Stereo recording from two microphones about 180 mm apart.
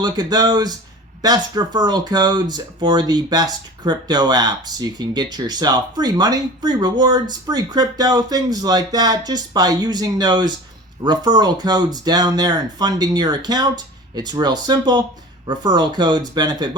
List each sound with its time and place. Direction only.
0.0 s speech: 20° right (ahead or behind)